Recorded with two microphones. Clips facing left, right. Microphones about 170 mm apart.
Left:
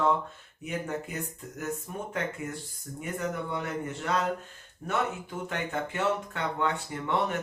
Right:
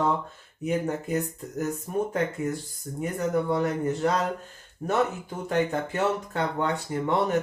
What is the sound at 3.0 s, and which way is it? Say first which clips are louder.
Speech: right 7 dB; 40° right (ahead or behind).